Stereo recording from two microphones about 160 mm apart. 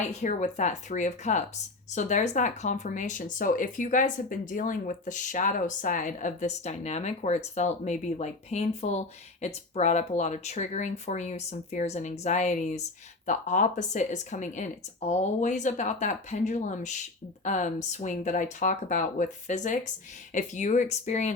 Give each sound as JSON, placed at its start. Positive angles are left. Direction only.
{"t": 0.2, "sound": "speech", "side_deg": 50}